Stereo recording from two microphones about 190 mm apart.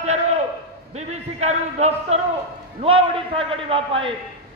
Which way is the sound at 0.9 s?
35° right (ahead or behind).